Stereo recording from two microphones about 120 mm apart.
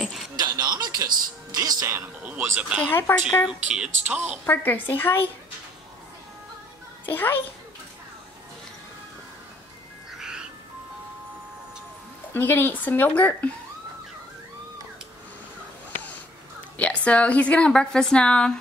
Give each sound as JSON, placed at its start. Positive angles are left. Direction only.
{"t": 0.4, "sound": "music", "side_deg": -35}
{"t": 1.9, "sound": "speech", "side_deg": -15}
{"t": 2.8, "sound": "speech", "side_deg": 20}
{"t": 3.4, "sound": "speech", "side_deg": -5}
{"t": 4.5, "sound": "a woman's voice", "side_deg": 15}
{"t": 7.1, "sound": "a woman's voice", "side_deg": 15}
{"t": 10.1, "sound": "music", "side_deg": -5}
{"t": 12.4, "sound": "a woman's voice", "side_deg": 15}
{"t": 16.7, "sound": "a woman's voice", "side_deg": 10}